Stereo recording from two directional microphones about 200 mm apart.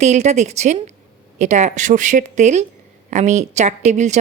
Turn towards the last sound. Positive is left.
turn(degrees=-35)  # may be behind; listen again after turning